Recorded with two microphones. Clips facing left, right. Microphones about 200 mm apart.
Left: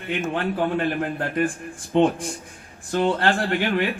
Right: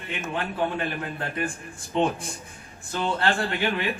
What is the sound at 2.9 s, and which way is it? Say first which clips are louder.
Speech: left 5 dB; 50° left (ahead or behind).